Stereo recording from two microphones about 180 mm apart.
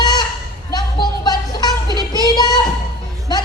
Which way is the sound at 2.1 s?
20° left (ahead or behind).